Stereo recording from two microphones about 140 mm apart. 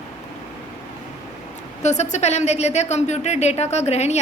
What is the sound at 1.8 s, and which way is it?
Speech, 55° left (ahead or behind).